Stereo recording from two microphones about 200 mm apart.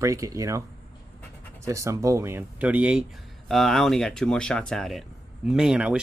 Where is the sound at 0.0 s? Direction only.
15° right (ahead or behind).